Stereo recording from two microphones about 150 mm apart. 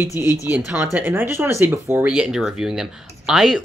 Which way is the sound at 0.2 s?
10° right (ahead or behind).